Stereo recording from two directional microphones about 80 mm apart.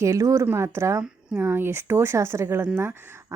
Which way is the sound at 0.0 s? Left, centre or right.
Right.